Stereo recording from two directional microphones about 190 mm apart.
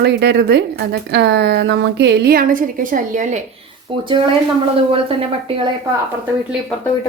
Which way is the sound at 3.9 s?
25° right (ahead or behind).